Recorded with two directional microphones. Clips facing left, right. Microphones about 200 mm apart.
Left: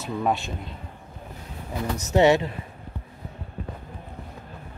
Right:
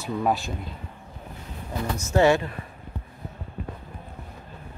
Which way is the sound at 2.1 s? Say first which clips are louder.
Left 1 dB; 20° left (ahead or behind).